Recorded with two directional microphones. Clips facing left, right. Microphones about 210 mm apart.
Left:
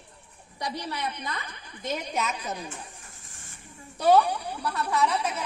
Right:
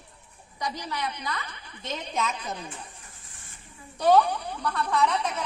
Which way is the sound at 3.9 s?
10° left (ahead or behind).